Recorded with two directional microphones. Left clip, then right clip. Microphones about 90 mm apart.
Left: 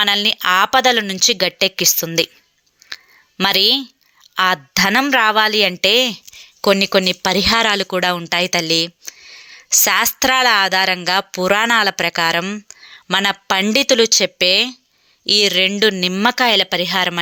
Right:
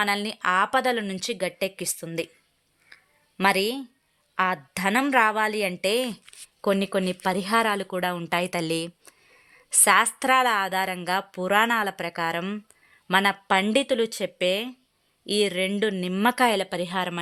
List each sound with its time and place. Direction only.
0.0 s a woman's voice: 20° left (ahead or behind)
0.3 s speech: 35° left (ahead or behind)
2.9 s a sound: 35° left (ahead or behind)
4.4 s a woman's voice: 35° left (ahead or behind)
6.6 s a woman's voice: 35° left (ahead or behind)
8.3 s speech: 10° left (ahead or behind)
8.7 s a sound: 10° left (ahead or behind)
10.2 s speech: 15° left (ahead or behind)
10.7 s a woman's voice: 25° left (ahead or behind)
11.2 s a woman's voice: 35° left (ahead or behind)
14.1 s a woman's voice: 25° left (ahead or behind)